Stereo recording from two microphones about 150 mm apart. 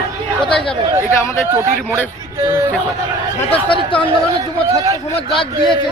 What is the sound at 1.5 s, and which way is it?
Speech, 15° right (ahead or behind).